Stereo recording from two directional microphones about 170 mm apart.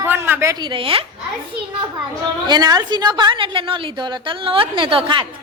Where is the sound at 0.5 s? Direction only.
30° right (ahead or behind).